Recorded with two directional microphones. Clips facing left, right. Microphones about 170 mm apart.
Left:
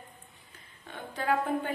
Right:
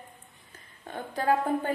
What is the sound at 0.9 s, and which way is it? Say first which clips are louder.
Speech: right 4 dB; 40° right (ahead or behind).